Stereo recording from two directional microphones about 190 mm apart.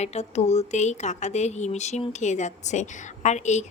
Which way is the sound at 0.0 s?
35° left (ahead or behind).